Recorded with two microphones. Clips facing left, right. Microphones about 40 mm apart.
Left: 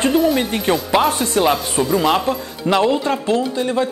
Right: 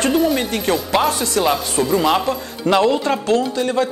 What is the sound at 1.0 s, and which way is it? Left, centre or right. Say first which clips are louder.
Speech: left 1 dB; left.